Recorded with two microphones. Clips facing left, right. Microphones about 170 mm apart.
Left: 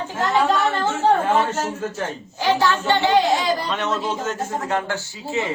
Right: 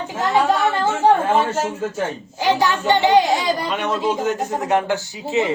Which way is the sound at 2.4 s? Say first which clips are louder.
Right 1 dB; 15° right (ahead or behind).